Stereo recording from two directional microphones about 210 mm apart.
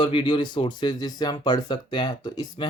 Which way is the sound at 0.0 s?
25° left (ahead or behind).